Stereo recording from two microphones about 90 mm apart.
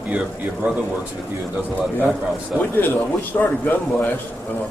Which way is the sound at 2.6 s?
20° left (ahead or behind).